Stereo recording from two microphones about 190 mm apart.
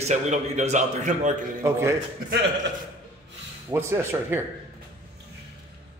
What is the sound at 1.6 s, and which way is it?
Speech, 15° right (ahead or behind).